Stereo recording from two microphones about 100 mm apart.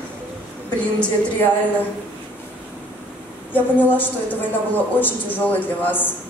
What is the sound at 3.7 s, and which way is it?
A woman's voice, 20° left (ahead or behind).